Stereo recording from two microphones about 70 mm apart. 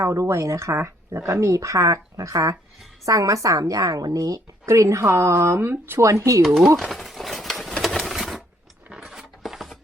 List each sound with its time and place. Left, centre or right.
0.0 s a woman's voice: right
6.0 s a woman's voice: right
6.4 s speech: centre
6.7 s a sound: centre